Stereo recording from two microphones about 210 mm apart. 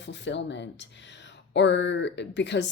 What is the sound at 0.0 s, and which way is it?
Speech, 60° left (ahead or behind).